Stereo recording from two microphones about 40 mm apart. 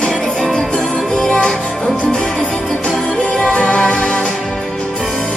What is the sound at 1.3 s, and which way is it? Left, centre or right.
Music, left.